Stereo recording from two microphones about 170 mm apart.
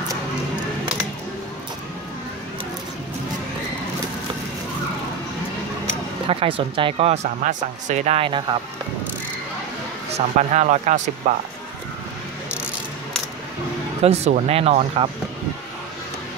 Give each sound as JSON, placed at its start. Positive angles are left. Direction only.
{"t": 5.9, "sound": "speech", "side_deg": -35}
{"t": 10.1, "sound": "speech", "side_deg": -40}
{"t": 14.0, "sound": "speech", "side_deg": -40}